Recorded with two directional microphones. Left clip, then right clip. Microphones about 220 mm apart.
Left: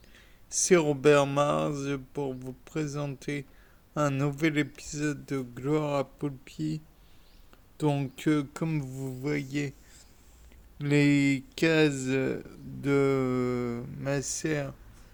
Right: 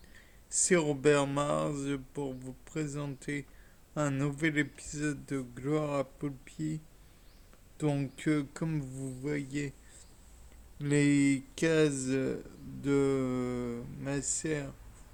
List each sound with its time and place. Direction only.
0.1 s speech: 20° left (ahead or behind)
7.8 s speech: 20° left (ahead or behind)
10.8 s speech: 20° left (ahead or behind)